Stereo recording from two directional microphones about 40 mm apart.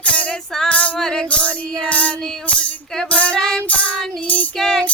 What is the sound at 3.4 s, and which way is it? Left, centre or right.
Music, centre.